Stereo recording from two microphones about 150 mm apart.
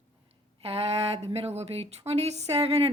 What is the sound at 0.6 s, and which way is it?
Speech, 45° right (ahead or behind).